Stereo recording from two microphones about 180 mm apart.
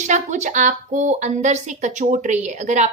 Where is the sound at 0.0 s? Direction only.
40° right (ahead or behind).